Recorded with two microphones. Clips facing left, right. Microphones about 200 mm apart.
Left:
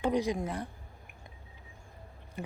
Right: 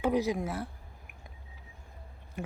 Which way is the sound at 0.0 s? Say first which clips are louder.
Right 1 dB; 5° right (ahead or behind).